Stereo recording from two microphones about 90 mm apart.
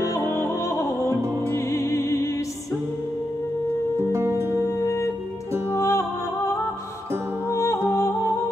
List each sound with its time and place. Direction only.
0.0 s music: 30° left (ahead or behind)
4.0 s music: 30° right (ahead or behind)
4.6 s music: 30° left (ahead or behind)
7.5 s music: 35° left (ahead or behind)